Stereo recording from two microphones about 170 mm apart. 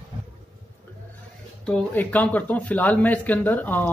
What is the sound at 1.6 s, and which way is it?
Speech, 10° left (ahead or behind).